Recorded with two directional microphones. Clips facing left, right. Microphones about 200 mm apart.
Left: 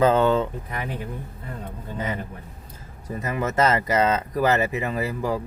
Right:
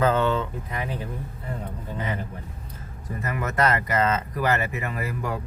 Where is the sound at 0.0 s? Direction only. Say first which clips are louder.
Left 3 dB; 30° left (ahead or behind).